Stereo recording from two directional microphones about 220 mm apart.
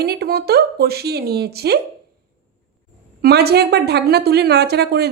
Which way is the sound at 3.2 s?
45° right (ahead or behind).